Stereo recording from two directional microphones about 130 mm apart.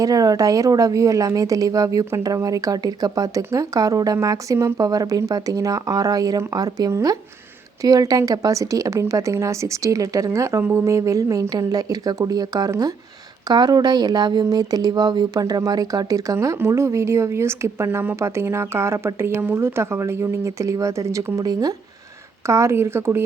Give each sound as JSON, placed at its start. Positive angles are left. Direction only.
{"t": 0.0, "sound": "speech", "side_deg": -30}